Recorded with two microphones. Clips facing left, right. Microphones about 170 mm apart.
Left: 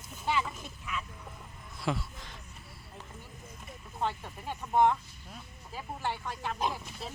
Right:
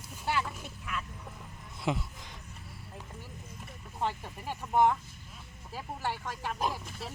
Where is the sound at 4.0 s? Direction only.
10° right (ahead or behind).